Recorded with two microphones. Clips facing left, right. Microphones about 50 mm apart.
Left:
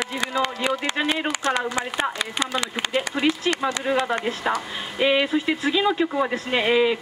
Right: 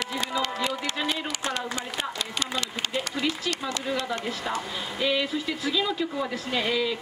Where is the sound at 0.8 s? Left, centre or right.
Left.